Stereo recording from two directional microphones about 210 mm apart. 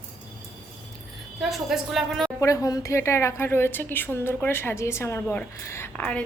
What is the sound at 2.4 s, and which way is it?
A woman's voice, 15° left (ahead or behind).